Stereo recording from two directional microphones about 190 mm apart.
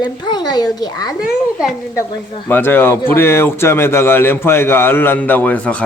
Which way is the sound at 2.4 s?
10° left (ahead or behind).